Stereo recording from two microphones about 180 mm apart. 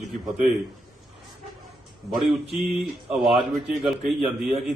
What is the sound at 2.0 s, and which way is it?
A man's voice, centre (ahead or behind).